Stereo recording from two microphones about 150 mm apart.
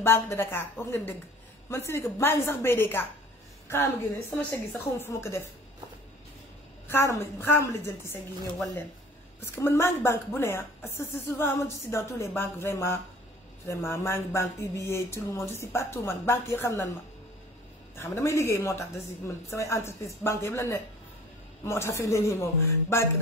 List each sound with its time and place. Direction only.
0.0 s a woman's voice: 15° left (ahead or behind)
6.9 s speech: 15° left (ahead or behind)
9.4 s speech: 15° left (ahead or behind)
17.9 s a woman's voice: 20° left (ahead or behind)